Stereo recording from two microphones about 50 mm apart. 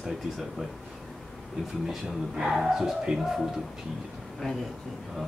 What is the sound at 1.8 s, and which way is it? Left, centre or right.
Speech, centre.